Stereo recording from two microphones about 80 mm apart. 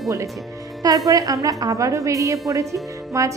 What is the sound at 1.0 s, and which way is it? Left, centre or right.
A woman's voice, right.